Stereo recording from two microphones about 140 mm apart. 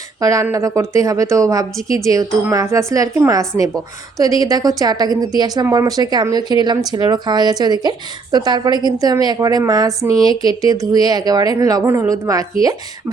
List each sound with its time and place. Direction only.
0.2 s speech: 25° right (ahead or behind)